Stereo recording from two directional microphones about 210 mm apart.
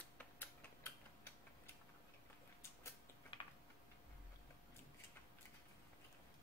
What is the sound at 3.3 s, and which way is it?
Typing, 20° left (ahead or behind).